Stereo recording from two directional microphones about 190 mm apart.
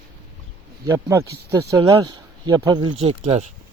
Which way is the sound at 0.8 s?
15° right (ahead or behind).